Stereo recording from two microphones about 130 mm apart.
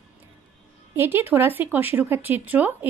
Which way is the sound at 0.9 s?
20° right (ahead or behind).